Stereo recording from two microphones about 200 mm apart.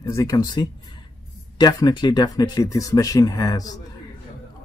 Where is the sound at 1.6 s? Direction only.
20° left (ahead or behind).